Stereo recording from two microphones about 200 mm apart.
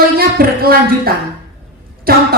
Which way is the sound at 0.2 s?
50° right (ahead or behind).